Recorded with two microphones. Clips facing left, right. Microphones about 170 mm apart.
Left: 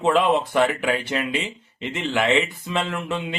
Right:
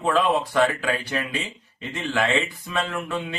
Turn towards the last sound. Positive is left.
turn(degrees=20)  # may be behind; listen again after turning